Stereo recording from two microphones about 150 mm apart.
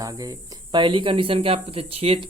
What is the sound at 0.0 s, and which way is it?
Speech, 25° right (ahead or behind).